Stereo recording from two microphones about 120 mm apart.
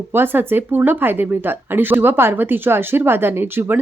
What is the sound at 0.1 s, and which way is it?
Speech, 15° right (ahead or behind).